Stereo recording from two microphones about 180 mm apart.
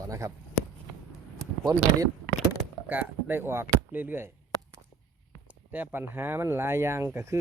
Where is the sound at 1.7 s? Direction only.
20° right (ahead or behind).